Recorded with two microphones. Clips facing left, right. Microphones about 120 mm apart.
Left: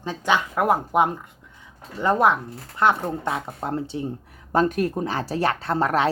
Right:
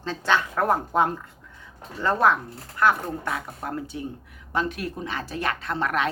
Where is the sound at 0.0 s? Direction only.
15° left (ahead or behind).